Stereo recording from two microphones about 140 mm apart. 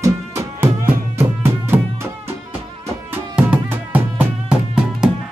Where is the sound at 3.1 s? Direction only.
10° right (ahead or behind).